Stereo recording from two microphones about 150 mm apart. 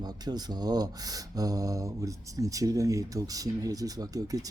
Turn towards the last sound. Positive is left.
turn(degrees=-25)  # may be behind; listen again after turning